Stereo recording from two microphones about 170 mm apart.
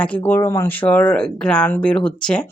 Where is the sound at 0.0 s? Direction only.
10° left (ahead or behind).